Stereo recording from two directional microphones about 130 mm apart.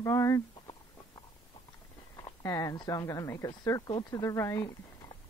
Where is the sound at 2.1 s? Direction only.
25° left (ahead or behind).